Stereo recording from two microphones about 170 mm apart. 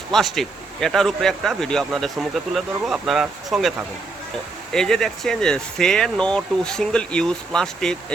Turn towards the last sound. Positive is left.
turn(degrees=5)  # may be behind; listen again after turning